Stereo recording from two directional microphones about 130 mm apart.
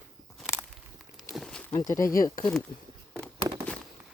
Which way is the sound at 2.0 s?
25° left (ahead or behind).